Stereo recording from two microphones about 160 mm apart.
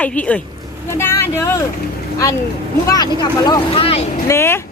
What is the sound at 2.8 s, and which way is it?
Speech, 25° left (ahead or behind).